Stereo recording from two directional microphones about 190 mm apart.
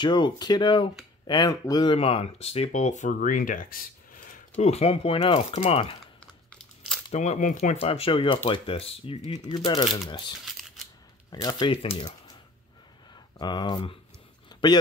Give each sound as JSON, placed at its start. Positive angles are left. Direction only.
{"t": 0.0, "sound": "speech", "side_deg": 25}
{"t": 7.1, "sound": "speech", "side_deg": 35}
{"t": 13.1, "sound": "speech", "side_deg": 25}
{"t": 14.5, "sound": "a sound", "side_deg": 20}